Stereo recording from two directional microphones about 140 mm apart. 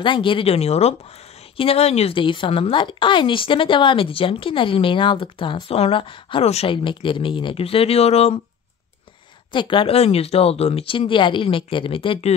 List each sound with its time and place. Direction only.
0.0 s a woman's voice: 35° left (ahead or behind)
9.5 s a woman's voice: 35° left (ahead or behind)